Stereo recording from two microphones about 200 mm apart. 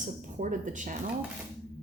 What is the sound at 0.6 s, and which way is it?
Speech, 40° right (ahead or behind).